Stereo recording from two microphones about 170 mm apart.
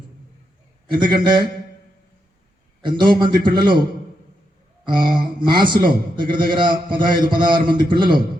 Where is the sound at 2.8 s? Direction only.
30° right (ahead or behind).